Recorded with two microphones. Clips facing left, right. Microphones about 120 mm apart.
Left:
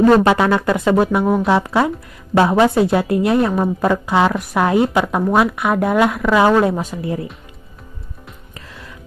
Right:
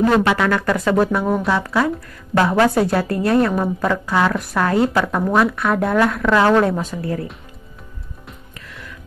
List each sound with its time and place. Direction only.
0.1 s speech: 25° left (ahead or behind); by 1.4 s 5° left (ahead or behind)
1.4 s a woman's voice: 20° left (ahead or behind)
8.5 s music: 30° left (ahead or behind)